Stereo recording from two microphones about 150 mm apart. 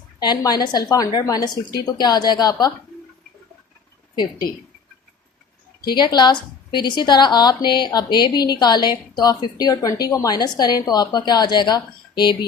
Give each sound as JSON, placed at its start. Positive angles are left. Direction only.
{"t": 0.2, "sound": "a woman's voice", "side_deg": 30}
{"t": 4.1, "sound": "a woman's voice", "side_deg": 30}
{"t": 5.9, "sound": "a woman's voice", "side_deg": 30}